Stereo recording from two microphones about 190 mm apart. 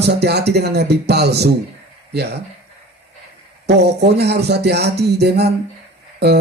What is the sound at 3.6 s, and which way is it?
Speech, 60° right (ahead or behind).